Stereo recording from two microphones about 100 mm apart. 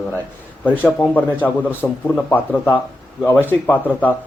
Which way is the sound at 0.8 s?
15° left (ahead or behind).